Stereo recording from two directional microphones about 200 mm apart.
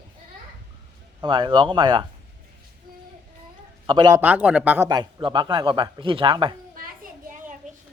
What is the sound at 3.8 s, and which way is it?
Speech, 20° right (ahead or behind).